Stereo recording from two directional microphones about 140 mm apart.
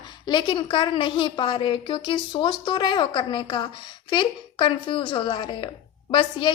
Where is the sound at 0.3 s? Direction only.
35° left (ahead or behind).